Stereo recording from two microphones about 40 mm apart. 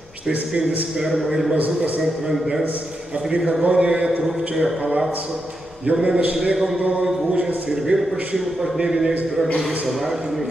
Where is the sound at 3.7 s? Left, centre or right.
Right.